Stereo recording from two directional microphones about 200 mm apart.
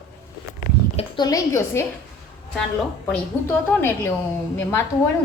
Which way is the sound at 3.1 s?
10° left (ahead or behind).